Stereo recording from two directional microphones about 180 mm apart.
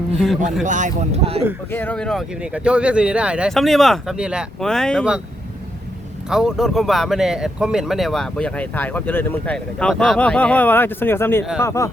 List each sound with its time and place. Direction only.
0.6 s speech: 45° right (ahead or behind)
1.7 s speech: 10° left (ahead or behind)
6.3 s speech: centre (ahead or behind); by 11.9 s 15° left (ahead or behind)